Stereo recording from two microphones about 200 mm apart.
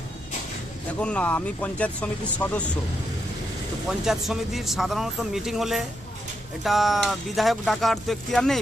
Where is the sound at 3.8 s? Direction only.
Centre (ahead or behind).